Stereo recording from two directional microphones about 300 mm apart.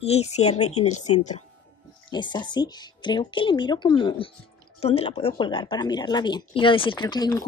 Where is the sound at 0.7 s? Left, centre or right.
Left.